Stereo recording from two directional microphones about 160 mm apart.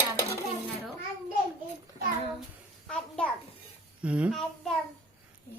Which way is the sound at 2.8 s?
5° left (ahead or behind).